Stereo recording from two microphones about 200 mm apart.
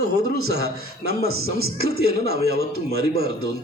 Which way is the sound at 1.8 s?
50° right (ahead or behind).